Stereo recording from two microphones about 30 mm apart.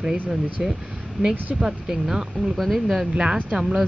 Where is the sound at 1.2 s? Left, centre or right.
Right.